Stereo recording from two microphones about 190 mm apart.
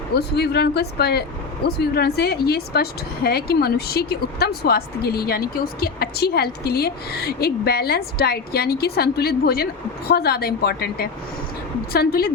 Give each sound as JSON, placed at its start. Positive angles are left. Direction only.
{"t": 0.1, "sound": "a woman's voice", "side_deg": 60}